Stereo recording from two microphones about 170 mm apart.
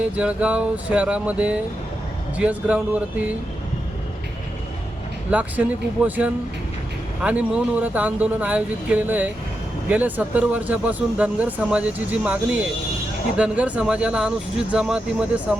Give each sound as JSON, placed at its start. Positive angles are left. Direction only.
{"t": 0.2, "sound": "speech", "side_deg": -5}
{"t": 5.3, "sound": "speech", "side_deg": -10}